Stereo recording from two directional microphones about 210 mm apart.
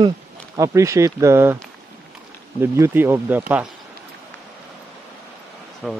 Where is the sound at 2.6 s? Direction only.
10° right (ahead or behind).